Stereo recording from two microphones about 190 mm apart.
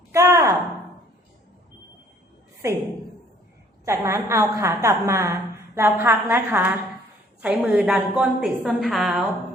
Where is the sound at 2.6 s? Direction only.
15° right (ahead or behind).